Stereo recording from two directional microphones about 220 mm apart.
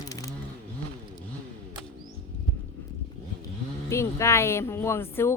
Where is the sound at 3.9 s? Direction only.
10° left (ahead or behind).